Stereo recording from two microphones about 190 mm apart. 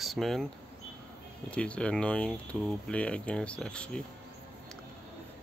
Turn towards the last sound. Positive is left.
turn(degrees=5)  # may be behind; listen again after turning